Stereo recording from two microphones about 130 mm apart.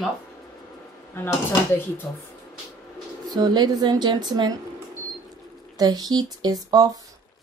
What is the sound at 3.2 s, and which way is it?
Speech, 30° right (ahead or behind).